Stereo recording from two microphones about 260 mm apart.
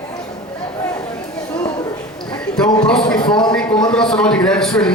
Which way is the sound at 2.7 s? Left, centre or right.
Centre.